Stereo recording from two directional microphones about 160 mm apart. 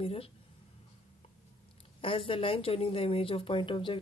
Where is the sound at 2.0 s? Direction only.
35° left (ahead or behind).